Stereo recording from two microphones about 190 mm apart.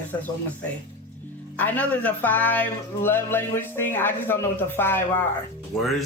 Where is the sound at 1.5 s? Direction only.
10° left (ahead or behind).